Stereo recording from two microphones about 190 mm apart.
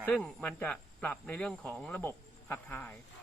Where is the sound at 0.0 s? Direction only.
5° left (ahead or behind).